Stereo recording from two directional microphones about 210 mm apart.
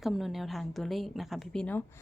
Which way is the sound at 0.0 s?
Centre (ahead or behind).